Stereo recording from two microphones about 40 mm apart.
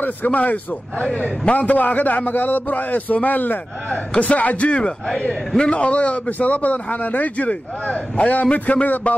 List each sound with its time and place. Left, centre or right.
0.0 s a man's voice: left
0.4 s a man's voice: left
1.6 s a man's voice: left